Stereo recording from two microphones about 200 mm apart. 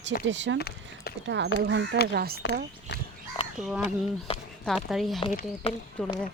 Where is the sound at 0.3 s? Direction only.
65° right (ahead or behind).